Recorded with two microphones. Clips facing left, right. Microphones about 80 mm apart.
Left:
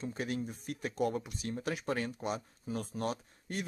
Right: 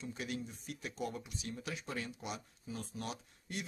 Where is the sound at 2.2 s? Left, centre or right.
Left.